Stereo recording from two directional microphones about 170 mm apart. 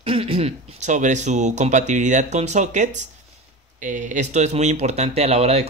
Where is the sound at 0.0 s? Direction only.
35° right (ahead or behind).